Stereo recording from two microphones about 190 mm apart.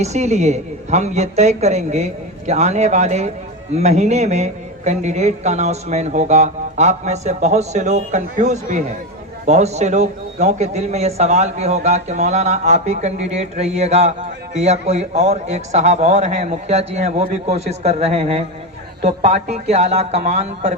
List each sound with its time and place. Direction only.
0.0 s a man's voice: 35° right (ahead or behind)